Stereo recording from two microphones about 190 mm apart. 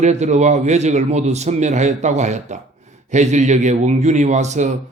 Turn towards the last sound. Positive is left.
turn(degrees=-40)  # may be behind; listen again after turning